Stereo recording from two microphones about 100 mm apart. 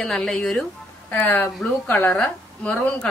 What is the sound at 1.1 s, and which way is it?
A woman's voice, 15° left (ahead or behind).